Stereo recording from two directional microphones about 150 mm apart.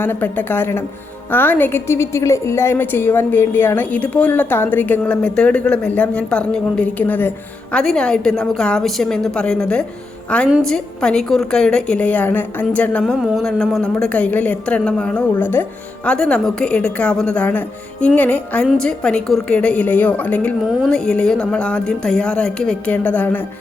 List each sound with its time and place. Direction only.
0.0 s a woman's voice: 15° left (ahead or behind)